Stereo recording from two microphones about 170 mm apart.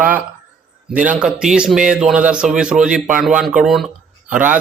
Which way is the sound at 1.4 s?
5° right (ahead or behind).